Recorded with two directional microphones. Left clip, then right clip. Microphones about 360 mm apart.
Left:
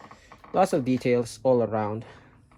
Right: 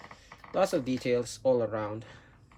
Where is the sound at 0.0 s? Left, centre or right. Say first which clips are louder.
Left 1 dB; centre.